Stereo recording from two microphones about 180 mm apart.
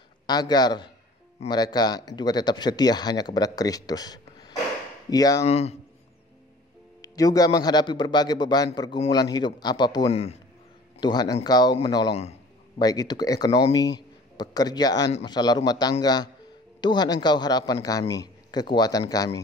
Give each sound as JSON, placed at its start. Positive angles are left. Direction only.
{"t": 0.3, "sound": "speech", "side_deg": 20}
{"t": 5.4, "sound": "a man's voice", "side_deg": 35}
{"t": 7.0, "sound": "speech", "side_deg": 20}
{"t": 10.0, "sound": "a man's voice", "side_deg": 35}
{"t": 11.0, "sound": "speech", "side_deg": 25}
{"t": 12.1, "sound": "a man's voice", "side_deg": 35}
{"t": 12.7, "sound": "a man's voice", "side_deg": 20}